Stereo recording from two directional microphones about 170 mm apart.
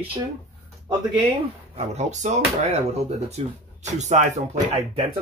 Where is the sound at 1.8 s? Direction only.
45° right (ahead or behind).